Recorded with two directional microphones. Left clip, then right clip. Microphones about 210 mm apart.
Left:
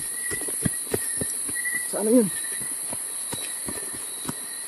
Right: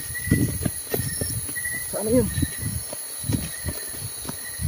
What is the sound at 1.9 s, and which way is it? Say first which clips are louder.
Speech: left 1 dB; 10° left (ahead or behind).